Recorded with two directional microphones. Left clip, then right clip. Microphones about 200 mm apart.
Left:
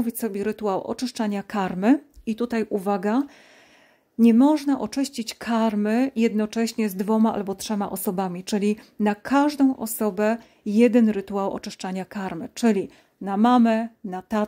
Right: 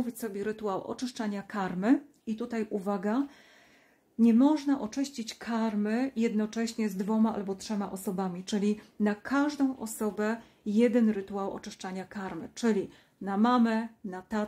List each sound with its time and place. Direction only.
0.0 s speech: 35° left (ahead or behind)